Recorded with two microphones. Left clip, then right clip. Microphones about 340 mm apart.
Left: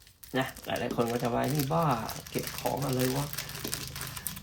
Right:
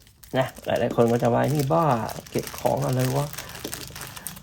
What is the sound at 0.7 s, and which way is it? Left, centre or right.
Speech, right.